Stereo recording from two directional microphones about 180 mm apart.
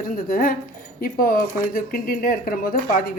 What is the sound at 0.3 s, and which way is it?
A woman's voice, 50° left (ahead or behind).